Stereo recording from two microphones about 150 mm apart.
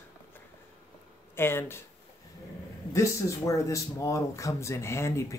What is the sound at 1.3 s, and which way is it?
Speech, 15° left (ahead or behind).